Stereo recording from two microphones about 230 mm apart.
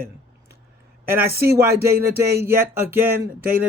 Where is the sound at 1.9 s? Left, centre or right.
Right.